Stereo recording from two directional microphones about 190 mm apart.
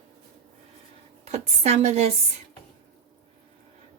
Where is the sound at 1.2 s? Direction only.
35° right (ahead or behind).